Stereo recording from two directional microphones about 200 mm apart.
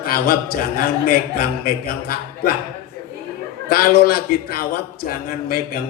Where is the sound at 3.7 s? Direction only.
50° left (ahead or behind).